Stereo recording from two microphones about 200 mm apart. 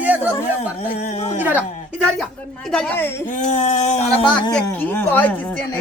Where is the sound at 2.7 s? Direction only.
10° left (ahead or behind).